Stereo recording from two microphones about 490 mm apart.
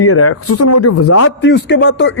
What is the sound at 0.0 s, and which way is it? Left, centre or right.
A woman's voice, left.